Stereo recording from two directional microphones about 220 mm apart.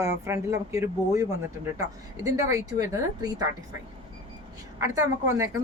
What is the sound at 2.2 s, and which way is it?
Speech, 15° right (ahead or behind).